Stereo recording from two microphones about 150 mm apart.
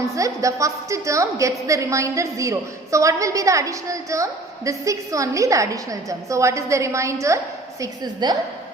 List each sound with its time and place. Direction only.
0.0 s a woman's voice: 20° right (ahead or behind)